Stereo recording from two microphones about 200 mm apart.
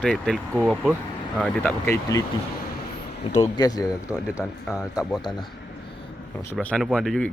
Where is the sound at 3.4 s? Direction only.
20° left (ahead or behind).